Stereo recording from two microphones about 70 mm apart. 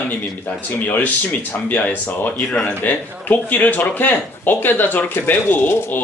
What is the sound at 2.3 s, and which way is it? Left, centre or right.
Speech, centre.